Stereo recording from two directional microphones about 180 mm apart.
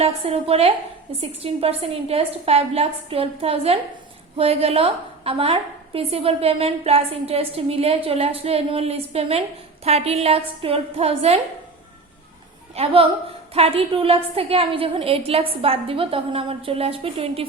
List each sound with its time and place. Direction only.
0.0 s a woman's voice: 35° right (ahead or behind)
12.7 s a woman's voice: 30° right (ahead or behind)